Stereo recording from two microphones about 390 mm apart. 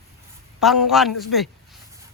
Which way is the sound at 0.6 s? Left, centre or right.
Centre.